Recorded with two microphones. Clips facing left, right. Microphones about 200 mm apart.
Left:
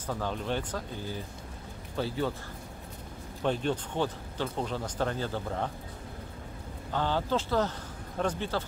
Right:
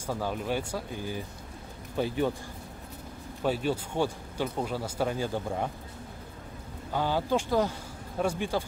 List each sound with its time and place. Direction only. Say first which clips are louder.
0.0 s speech: right 2 dB; 10° right (ahead or behind)
3.4 s speech: right 1 dB; 5° right (ahead or behind)
6.9 s speech: right 2 dB; 10° right (ahead or behind)